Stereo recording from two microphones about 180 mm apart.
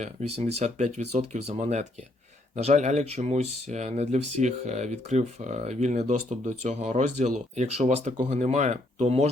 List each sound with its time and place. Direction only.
0.0 s speech: 35° right (ahead or behind)